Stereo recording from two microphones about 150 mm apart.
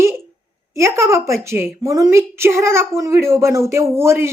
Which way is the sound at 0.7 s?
20° right (ahead or behind).